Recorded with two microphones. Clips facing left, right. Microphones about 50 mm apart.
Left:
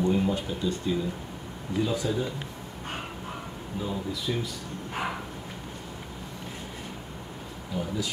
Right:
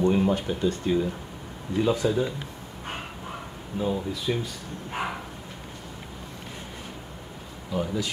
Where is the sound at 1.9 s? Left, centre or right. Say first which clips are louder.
Right 4 dB; right.